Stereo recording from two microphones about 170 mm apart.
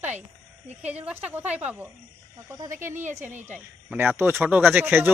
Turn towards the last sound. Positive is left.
turn(degrees=-10)  # may be behind; listen again after turning